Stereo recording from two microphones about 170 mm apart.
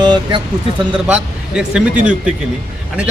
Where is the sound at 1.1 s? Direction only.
5° right (ahead or behind).